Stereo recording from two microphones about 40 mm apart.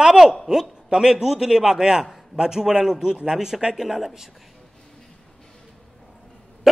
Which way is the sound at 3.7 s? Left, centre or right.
Centre.